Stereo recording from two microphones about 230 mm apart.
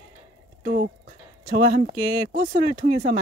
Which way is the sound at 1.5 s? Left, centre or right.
Right.